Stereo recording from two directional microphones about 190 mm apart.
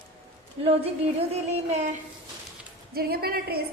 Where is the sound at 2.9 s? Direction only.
55° right (ahead or behind).